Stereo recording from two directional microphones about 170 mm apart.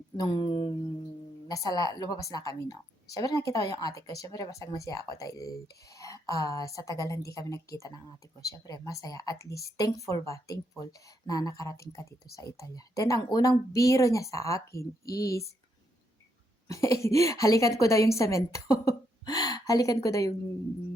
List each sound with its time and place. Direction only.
0.2 s a woman's voice: 25° left (ahead or behind)
16.6 s a woman's voice: 15° left (ahead or behind)